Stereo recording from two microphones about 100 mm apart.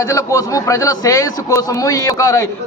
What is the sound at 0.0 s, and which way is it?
A man's voice, 30° left (ahead or behind).